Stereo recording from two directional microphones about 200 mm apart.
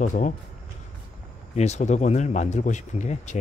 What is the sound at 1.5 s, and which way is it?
Speech, 35° left (ahead or behind).